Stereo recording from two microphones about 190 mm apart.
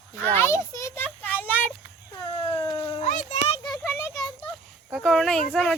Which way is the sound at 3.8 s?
15° left (ahead or behind).